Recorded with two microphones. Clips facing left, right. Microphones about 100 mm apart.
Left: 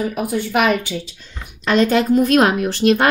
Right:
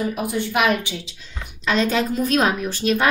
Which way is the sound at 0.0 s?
50° left (ahead or behind).